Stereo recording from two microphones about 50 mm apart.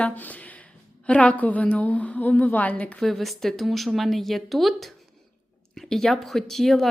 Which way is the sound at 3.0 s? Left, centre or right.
Centre.